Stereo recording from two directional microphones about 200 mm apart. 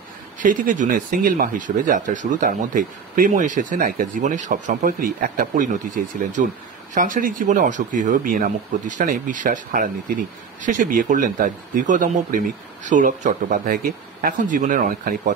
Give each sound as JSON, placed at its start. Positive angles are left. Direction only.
{"t": 0.4, "sound": "speech", "side_deg": -40}